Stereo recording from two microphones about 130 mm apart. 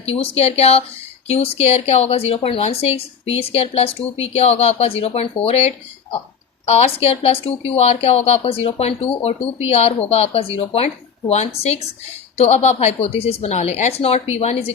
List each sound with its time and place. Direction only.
0.0 s speech: 50° left (ahead or behind)